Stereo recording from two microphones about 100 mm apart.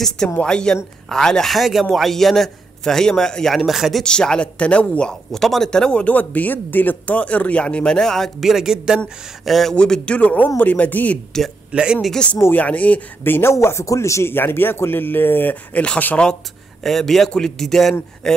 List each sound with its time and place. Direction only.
0.4 s a man's voice: 10° left (ahead or behind)
11.7 s speech: 10° right (ahead or behind)
12.0 s speech: 5° left (ahead or behind)
12.4 s speech: 20° left (ahead or behind)
16.8 s a man's voice: centre (ahead or behind)